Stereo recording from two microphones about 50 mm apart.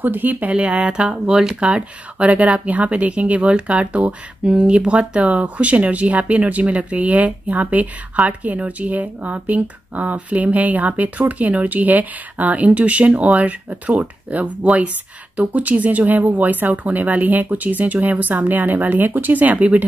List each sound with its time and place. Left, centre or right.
0.0 s speech: right
0.5 s speech: right